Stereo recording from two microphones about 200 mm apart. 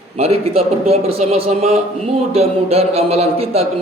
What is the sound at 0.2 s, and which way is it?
A man's voice, 30° right (ahead or behind).